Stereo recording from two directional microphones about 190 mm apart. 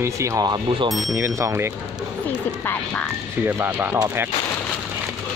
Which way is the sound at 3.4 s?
10° right (ahead or behind).